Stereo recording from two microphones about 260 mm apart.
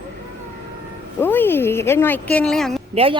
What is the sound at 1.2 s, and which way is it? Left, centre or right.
Speech, centre.